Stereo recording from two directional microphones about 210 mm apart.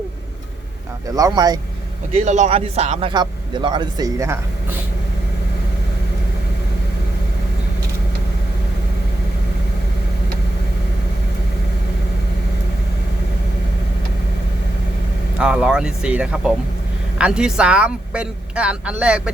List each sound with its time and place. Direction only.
1.1 s speech: 15° right (ahead or behind)
2.1 s speech: 35° right (ahead or behind); by 4.4 s 15° right (ahead or behind)
15.4 s a woman's voice: 5° right (ahead or behind)